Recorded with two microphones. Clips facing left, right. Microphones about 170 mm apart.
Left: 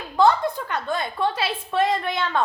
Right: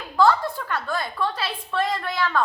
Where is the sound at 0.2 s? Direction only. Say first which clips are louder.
Left 1 dB; 20° left (ahead or behind).